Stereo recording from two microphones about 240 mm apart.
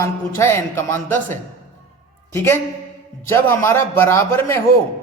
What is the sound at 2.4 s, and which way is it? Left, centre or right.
Speech, centre.